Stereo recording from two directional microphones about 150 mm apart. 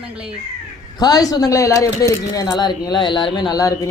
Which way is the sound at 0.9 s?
25° left (ahead or behind).